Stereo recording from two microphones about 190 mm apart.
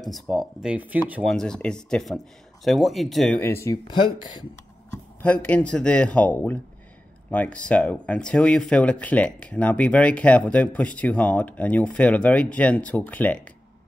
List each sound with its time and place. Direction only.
0.0 s speech: centre (ahead or behind)
1.3 s speech: 5° left (ahead or behind)
3.3 s speech: 15° left (ahead or behind)
5.2 s speech: 10° left (ahead or behind)